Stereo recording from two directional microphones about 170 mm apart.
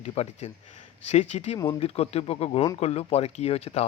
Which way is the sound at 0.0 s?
40° left (ahead or behind).